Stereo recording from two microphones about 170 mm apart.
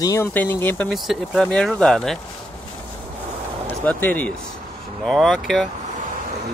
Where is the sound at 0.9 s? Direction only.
Centre (ahead or behind).